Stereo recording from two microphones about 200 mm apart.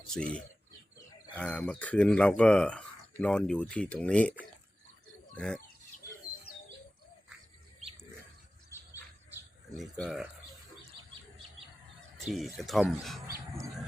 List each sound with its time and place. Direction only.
0.1 s speech: 5° left (ahead or behind)
6.5 s bird: 90° left
9.7 s speech: centre (ahead or behind)
12.5 s speech: centre (ahead or behind)